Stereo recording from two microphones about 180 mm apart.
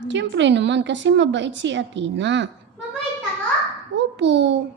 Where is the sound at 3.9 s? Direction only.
80° right.